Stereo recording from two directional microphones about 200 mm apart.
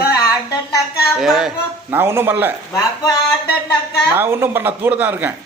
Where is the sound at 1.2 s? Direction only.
Centre (ahead or behind).